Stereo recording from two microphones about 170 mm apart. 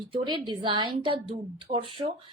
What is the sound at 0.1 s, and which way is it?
A woman's voice, 30° right (ahead or behind).